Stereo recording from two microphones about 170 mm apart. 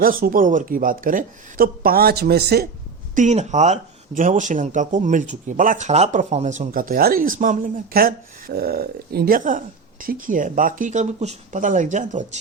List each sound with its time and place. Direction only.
0.0 s speech: 60° right (ahead or behind)
3.2 s speech: 45° right (ahead or behind)